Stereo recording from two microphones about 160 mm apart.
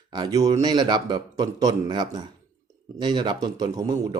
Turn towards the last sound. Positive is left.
turn(degrees=-25)  # may be behind; listen again after turning